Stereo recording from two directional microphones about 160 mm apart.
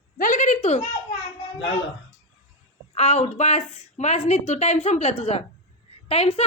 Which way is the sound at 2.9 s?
40° left (ahead or behind).